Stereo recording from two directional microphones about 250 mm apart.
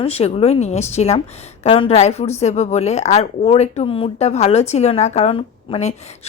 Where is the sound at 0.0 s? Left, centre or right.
Left.